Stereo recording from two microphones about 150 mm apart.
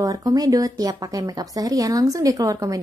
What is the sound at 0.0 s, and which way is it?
Speech, 25° right (ahead or behind).